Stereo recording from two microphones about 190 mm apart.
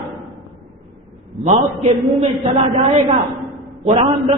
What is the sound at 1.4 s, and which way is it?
A man's voice, 35° right (ahead or behind).